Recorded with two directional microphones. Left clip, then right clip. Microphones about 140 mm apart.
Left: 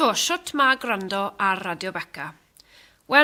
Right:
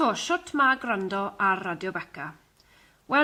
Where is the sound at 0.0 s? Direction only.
35° left (ahead or behind).